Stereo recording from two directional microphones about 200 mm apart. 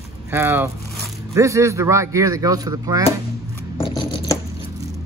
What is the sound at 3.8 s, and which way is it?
Scratch, 25° left (ahead or behind).